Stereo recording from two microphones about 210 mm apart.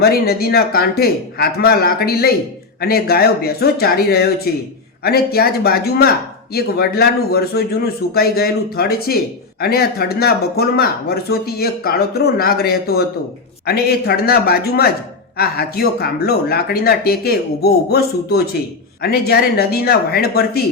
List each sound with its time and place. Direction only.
0.0 s a man's voice: 45° left (ahead or behind)